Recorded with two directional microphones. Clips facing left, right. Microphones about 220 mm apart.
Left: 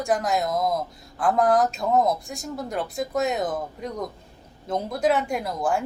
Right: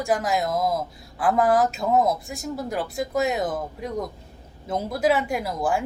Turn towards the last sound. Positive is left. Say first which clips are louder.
# right 1 dB
turn(degrees=0)  # may be behind; listen again after turning